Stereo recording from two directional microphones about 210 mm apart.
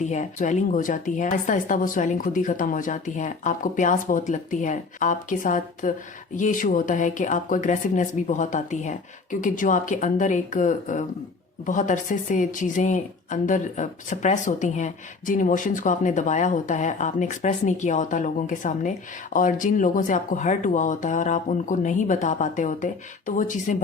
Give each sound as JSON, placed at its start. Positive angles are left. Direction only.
{"t": 0.0, "sound": "a woman's voice", "side_deg": 35}